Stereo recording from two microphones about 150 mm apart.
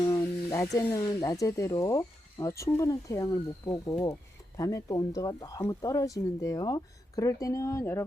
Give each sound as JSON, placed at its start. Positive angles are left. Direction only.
{"t": 0.1, "sound": "speech", "side_deg": 20}